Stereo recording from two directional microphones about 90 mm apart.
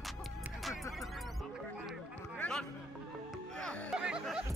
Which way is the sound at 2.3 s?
10° left (ahead or behind).